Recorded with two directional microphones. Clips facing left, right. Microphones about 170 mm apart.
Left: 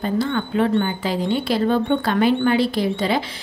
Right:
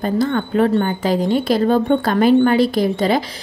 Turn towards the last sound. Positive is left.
turn(degrees=-45)  # may be behind; listen again after turning